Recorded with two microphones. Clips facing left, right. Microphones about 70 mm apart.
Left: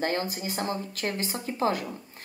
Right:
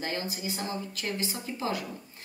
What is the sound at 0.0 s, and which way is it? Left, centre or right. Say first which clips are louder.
A woman's voice: left 5 dB; left.